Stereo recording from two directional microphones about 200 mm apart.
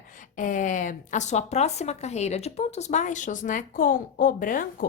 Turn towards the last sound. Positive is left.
turn(degrees=40)  # may be behind; listen again after turning